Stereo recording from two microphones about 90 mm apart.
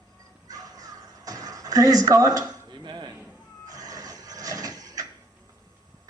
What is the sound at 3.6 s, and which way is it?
Reversing beeps, 40° right (ahead or behind).